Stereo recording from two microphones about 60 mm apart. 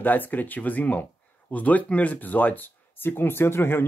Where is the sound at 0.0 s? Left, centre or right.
Left.